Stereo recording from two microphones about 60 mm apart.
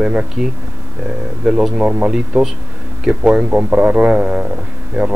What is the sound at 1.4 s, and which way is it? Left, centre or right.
Speech, centre.